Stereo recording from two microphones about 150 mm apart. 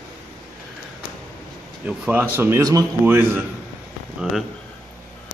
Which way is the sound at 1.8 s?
10° right (ahead or behind).